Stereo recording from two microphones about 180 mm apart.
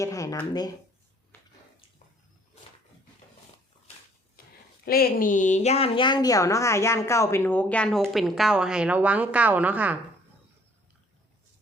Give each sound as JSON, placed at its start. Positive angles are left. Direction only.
{"t": 0.0, "sound": "speech", "side_deg": 20}
{"t": 4.4, "sound": "a sound", "side_deg": 55}
{"t": 4.9, "sound": "a woman's voice", "side_deg": 55}